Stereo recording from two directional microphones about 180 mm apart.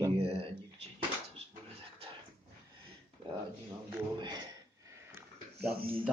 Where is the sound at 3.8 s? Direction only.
25° right (ahead or behind).